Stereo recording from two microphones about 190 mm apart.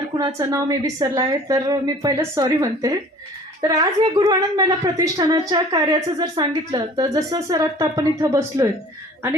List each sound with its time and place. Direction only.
0.2 s a woman's voice: 20° right (ahead or behind)